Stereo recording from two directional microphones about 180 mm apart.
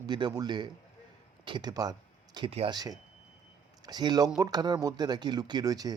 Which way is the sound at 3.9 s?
20° right (ahead or behind).